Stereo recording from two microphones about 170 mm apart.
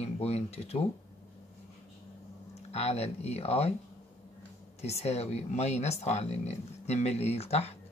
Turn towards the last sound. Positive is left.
turn(degrees=40)  # may be behind; listen again after turning